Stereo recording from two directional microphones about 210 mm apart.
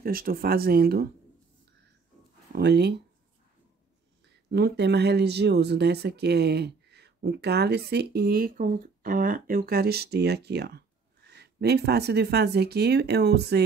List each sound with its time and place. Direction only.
0.0 s speech: 45° right (ahead or behind)
2.5 s speech: 50° right (ahead or behind)
4.5 s speech: 50° right (ahead or behind)